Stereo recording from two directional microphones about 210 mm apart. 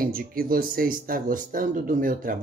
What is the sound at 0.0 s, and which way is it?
A man's voice, 45° right (ahead or behind).